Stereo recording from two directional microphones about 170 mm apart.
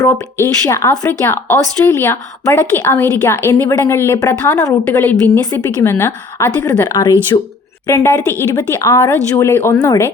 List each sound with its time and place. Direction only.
0.0 s speech: 15° left (ahead or behind); by 7.5 s 30° left (ahead or behind)
7.9 s speech: 15° left (ahead or behind)